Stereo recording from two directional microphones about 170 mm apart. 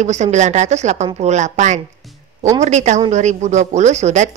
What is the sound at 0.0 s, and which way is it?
Speech, 45° right (ahead or behind).